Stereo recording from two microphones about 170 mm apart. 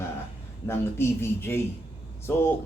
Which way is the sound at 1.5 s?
15° left (ahead or behind).